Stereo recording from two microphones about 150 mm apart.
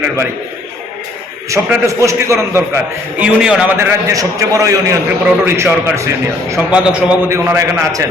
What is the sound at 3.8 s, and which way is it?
A man's voice, 20° right (ahead or behind).